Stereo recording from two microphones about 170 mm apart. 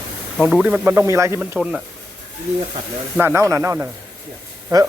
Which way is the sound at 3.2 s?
15° right (ahead or behind).